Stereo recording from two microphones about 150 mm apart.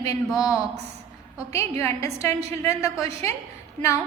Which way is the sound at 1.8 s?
20° left (ahead or behind).